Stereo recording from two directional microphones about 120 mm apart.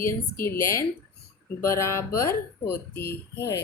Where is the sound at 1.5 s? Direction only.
25° left (ahead or behind).